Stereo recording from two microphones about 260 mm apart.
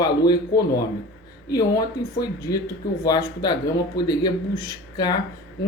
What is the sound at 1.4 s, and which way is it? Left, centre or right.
Speech, centre.